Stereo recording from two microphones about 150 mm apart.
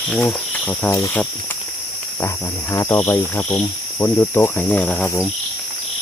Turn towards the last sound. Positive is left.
turn(degrees=10)  # may be behind; listen again after turning